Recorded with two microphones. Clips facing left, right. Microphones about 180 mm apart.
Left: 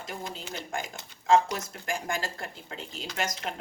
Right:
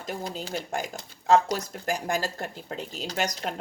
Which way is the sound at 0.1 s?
40° right (ahead or behind).